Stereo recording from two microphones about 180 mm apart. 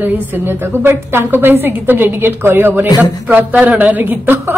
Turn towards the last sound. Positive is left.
turn(degrees=-10)  # may be behind; listen again after turning